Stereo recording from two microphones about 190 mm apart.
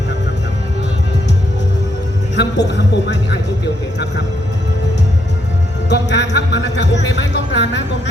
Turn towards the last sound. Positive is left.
turn(degrees=70)  # may be behind; listen again after turning